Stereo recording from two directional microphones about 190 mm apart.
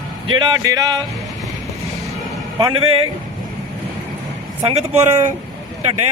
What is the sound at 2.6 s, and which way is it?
Speech, 20° right (ahead or behind).